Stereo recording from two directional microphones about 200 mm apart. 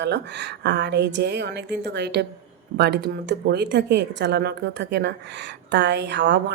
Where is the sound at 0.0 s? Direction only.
55° right (ahead or behind).